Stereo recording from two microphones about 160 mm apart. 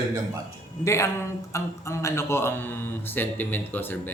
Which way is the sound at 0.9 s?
20° left (ahead or behind).